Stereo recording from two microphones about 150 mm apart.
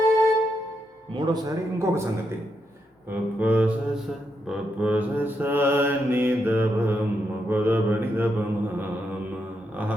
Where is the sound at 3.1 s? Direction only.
10° right (ahead or behind).